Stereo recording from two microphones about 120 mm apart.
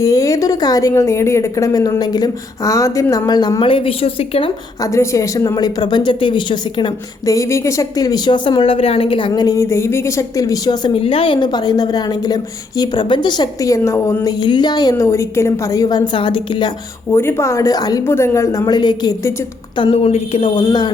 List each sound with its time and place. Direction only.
0.0 s a woman's voice: 30° left (ahead or behind)
3.6 s a woman's voice: 50° left (ahead or behind)
4.8 s a woman's voice: 25° left (ahead or behind); by 6.9 s 40° left (ahead or behind)
7.3 s a woman's voice: 25° left (ahead or behind)
14.3 s a woman's voice: 40° left (ahead or behind)
17.1 s a woman's voice: 20° left (ahead or behind)
18.0 s a woman's voice: 20° left (ahead or behind); by 19.1 s 35° left (ahead or behind)
19.7 s a woman's voice: 45° left (ahead or behind)
20.6 s a woman's voice: 40° left (ahead or behind)